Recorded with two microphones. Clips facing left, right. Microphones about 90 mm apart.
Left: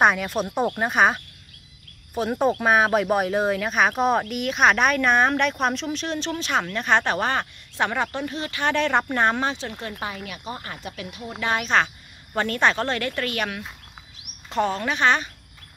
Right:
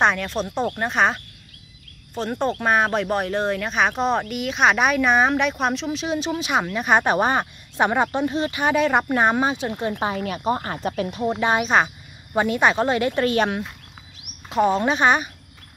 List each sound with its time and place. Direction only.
0.0 s speech: 5° left (ahead or behind); by 10.1 s 25° right (ahead or behind)
10.1 s speech: 40° right (ahead or behind)
11.4 s speech: 15° right (ahead or behind)
14.7 s speech: 20° right (ahead or behind)